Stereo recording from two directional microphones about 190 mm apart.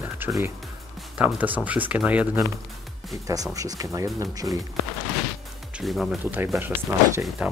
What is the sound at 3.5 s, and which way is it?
Speech, 20° right (ahead or behind).